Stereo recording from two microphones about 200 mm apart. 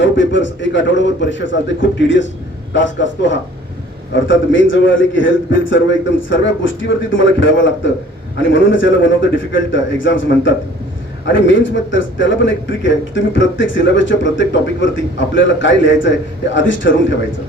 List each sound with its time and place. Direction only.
0.0 s a man's voice: 65° left (ahead or behind)